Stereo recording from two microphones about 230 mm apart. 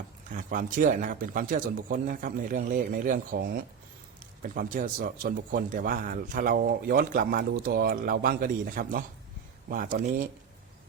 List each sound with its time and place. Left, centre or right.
0.3 s speech: right